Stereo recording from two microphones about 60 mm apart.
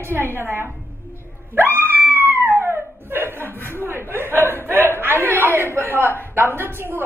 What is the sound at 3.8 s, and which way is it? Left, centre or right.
A woman's voice, right.